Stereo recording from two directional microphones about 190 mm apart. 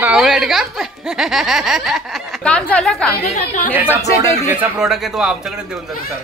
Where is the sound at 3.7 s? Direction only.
10° right (ahead or behind).